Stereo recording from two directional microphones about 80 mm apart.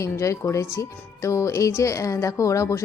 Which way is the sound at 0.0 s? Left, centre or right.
Left.